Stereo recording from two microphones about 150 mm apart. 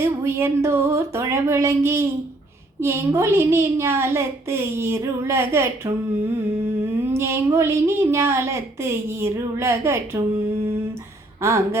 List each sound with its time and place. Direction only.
0.0 s a woman's voice: 20° right (ahead or behind)
11.4 s a woman's voice: 20° right (ahead or behind)